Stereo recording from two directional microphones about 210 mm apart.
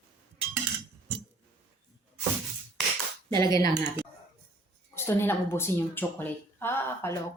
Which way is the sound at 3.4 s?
20° left (ahead or behind).